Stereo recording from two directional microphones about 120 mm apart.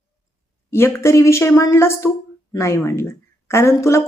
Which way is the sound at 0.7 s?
20° left (ahead or behind).